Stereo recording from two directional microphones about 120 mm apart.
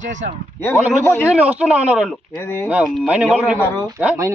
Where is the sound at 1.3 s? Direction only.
10° right (ahead or behind).